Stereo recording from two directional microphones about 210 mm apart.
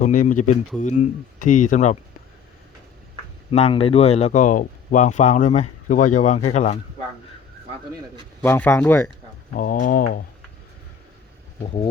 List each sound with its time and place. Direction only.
0.0 s speech: 35° left (ahead or behind)
3.5 s speech: 30° left (ahead or behind)
8.4 s speech: 10° left (ahead or behind)
9.6 s speech: 40° left (ahead or behind)